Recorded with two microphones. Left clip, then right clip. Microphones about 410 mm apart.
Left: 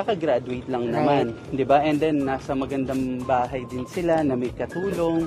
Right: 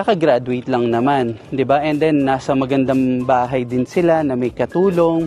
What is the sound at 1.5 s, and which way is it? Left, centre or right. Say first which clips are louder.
Speech: right 3 dB; right.